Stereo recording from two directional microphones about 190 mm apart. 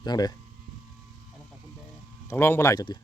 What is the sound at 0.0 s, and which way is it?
Speech, 20° left (ahead or behind).